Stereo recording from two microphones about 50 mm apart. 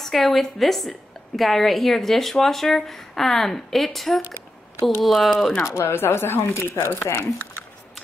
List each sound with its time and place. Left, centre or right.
0.0 s a woman's voice: centre
5.6 s speech: left